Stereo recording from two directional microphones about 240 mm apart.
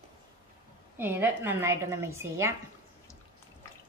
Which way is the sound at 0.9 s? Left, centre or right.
Centre.